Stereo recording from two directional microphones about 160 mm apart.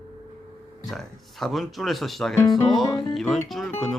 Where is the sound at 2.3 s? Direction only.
20° left (ahead or behind).